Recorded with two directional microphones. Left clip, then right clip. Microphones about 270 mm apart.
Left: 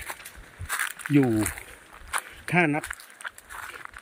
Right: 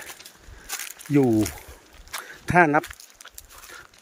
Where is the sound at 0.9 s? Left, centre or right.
Centre.